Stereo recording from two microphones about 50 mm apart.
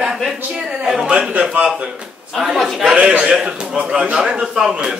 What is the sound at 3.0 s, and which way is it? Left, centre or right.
A man's voice, centre.